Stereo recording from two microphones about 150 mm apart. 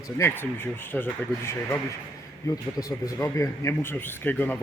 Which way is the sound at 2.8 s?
25° left (ahead or behind).